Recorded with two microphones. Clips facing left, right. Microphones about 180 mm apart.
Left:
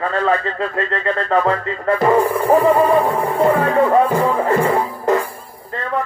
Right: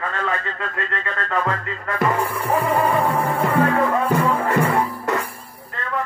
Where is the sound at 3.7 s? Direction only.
35° left (ahead or behind).